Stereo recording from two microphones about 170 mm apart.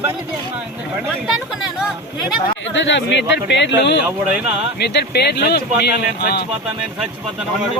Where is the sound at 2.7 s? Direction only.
90° left.